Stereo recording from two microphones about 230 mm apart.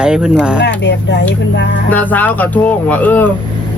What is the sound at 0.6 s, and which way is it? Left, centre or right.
Speech, left.